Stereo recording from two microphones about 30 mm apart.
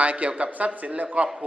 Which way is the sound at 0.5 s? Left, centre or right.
Right.